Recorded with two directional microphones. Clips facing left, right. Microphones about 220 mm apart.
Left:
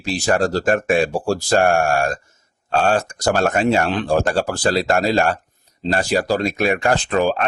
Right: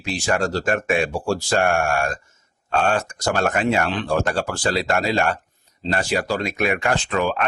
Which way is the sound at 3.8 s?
40° left (ahead or behind).